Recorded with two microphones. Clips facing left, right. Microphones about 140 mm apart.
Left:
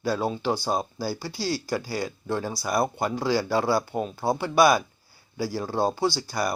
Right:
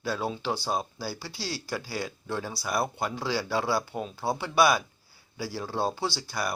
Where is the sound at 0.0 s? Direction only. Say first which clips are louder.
Left 5 dB; 45° left (ahead or behind).